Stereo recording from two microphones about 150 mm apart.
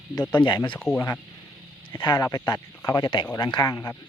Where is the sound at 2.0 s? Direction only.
25° left (ahead or behind).